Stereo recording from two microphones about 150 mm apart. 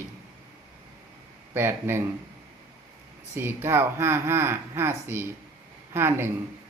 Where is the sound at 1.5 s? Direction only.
15° right (ahead or behind).